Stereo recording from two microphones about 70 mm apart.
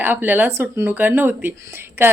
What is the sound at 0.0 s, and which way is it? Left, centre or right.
A woman's voice, right.